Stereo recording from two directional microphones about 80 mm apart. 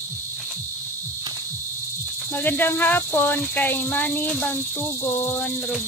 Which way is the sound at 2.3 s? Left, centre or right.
Left.